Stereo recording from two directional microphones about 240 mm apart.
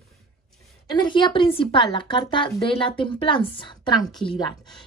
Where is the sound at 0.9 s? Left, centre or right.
Centre.